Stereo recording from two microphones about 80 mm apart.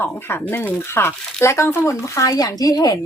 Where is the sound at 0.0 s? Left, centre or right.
Left.